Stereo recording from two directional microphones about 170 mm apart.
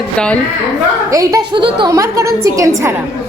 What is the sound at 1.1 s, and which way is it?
A woman's voice, 20° right (ahead or behind).